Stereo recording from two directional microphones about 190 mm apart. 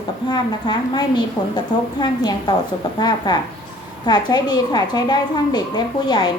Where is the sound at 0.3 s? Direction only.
20° left (ahead or behind).